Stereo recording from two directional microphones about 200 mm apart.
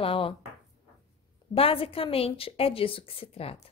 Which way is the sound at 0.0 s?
25° left (ahead or behind).